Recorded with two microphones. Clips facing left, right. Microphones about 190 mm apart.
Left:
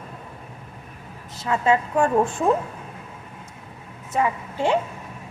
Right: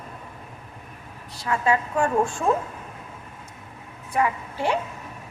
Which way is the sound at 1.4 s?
20° left (ahead or behind).